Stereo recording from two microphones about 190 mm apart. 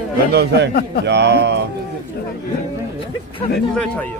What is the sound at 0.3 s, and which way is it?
Speech, 60° right (ahead or behind).